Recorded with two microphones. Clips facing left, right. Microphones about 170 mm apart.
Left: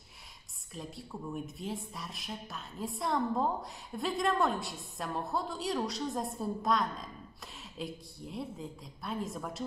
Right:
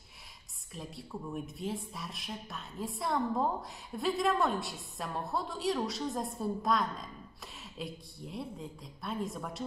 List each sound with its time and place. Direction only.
0.7 s speech: centre (ahead or behind)